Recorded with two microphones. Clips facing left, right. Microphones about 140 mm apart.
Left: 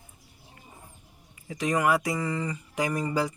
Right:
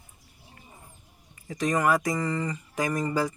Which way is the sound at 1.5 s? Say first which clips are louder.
Right 1 dB; 10° left (ahead or behind).